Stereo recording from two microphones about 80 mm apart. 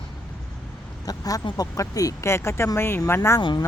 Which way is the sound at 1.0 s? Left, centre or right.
Left.